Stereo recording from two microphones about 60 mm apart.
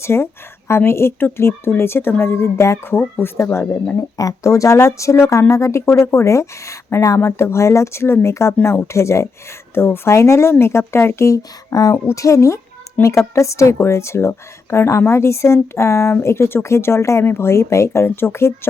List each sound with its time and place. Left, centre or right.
0.0 s speech: left
3.4 s speech: left
4.2 s speech: left
7.2 s speech: left
11.3 s speech: left
12.0 s speech: left
13.0 s a woman's voice: left
13.3 s speech: left